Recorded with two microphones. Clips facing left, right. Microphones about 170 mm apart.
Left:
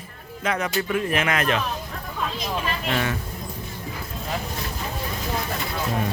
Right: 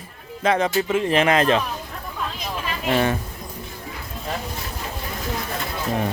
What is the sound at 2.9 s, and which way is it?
Speech, 30° right (ahead or behind).